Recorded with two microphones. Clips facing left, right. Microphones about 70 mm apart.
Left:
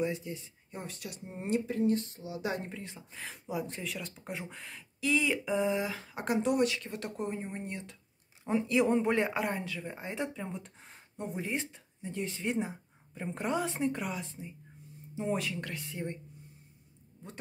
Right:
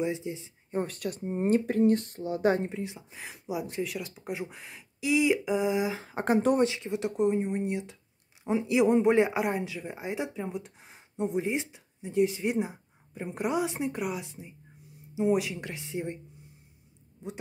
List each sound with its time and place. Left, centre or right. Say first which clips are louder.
0.0 s speech: right 3 dB; right
0.7 s speech: right 11 dB; right
1.2 s speech: right 7 dB; right
1.7 s speech: right 5 dB; right
2.7 s speech: right 7 dB; centre
6.0 s speech: right 6 dB; right
6.6 s speech: right 4 dB; right
17.2 s speech: right 9 dB; centre